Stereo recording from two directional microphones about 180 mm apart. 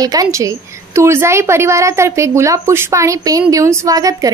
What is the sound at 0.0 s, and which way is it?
A woman's voice, 20° right (ahead or behind).